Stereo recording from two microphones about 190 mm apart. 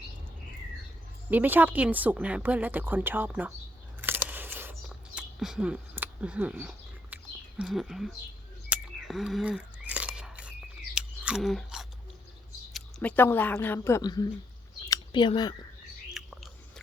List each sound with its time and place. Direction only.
1.3 s speech: 10° right (ahead or behind)
4.0 s a sound: 10° right (ahead or behind)
7.6 s speech: centre (ahead or behind)
8.7 s chewing: centre (ahead or behind)
10.9 s whispering: 5° right (ahead or behind)
12.7 s speech: 5° left (ahead or behind)
14.8 s a sound: 25° left (ahead or behind)
16.1 s biting: centre (ahead or behind)